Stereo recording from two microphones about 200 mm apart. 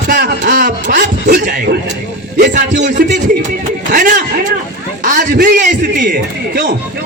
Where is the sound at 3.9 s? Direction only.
40° right (ahead or behind).